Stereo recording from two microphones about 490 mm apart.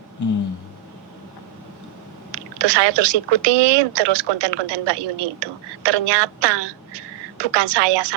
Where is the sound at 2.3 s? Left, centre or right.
Right.